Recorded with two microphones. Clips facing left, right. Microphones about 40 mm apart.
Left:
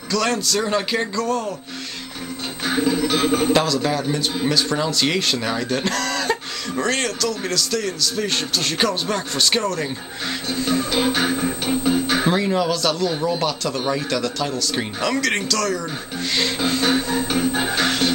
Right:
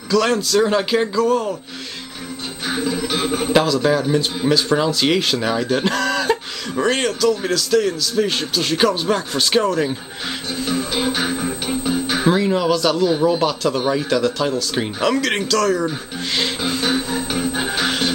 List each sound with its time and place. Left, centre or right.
0.1 s a man's voice: centre
2.6 s a man's voice: centre
9.6 s speech: right
10.5 s a man's voice: centre
16.3 s music: centre